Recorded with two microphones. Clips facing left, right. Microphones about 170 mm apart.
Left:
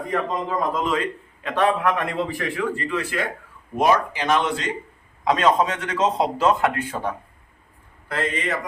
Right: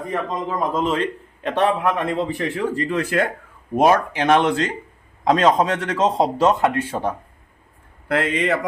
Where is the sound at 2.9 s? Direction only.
50° right (ahead or behind).